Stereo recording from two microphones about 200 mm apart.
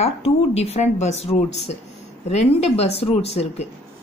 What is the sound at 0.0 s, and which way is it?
Speech, 30° left (ahead or behind).